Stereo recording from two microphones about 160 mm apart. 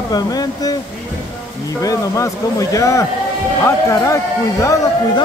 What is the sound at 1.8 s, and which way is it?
Speech, 20° left (ahead or behind).